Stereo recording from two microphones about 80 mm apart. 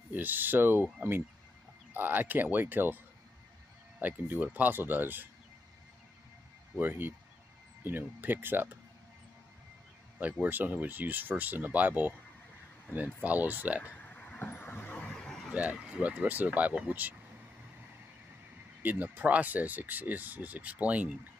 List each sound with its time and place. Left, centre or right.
0.1 s speech: right
2.0 s speech: right
4.0 s speech: right
6.8 s speech: right
10.4 s speech: right
13.8 s vehicle: left
15.0 s a sound: centre
15.5 s speech: centre
18.8 s speech: right